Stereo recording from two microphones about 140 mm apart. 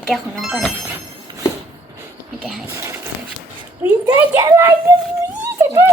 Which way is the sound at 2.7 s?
20° right (ahead or behind).